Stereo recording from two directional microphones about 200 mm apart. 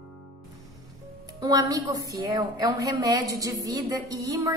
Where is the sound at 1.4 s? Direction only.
20° right (ahead or behind).